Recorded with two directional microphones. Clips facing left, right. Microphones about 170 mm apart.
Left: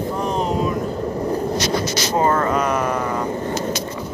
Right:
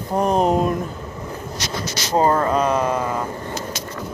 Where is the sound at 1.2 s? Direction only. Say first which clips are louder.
Left 9 dB; 35° left (ahead or behind).